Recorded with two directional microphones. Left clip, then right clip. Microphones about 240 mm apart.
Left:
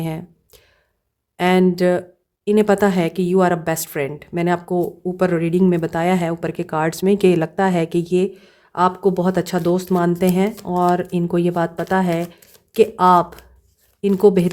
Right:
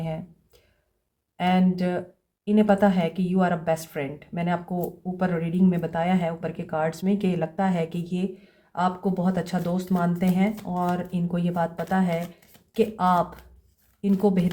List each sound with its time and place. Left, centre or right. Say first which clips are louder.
0.0 s speech: left 5 dB; left